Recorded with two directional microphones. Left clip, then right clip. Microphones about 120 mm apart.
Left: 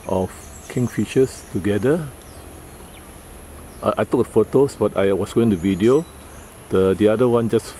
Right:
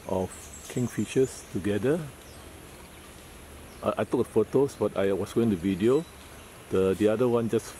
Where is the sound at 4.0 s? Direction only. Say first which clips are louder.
Left 8 dB; 5° left (ahead or behind).